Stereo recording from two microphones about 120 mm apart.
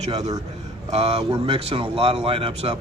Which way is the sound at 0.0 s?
65° right (ahead or behind).